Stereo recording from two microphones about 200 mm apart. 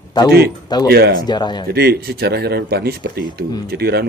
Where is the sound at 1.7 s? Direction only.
50° right (ahead or behind).